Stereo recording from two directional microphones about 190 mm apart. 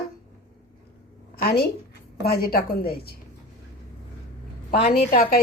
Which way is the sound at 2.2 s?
55° left (ahead or behind).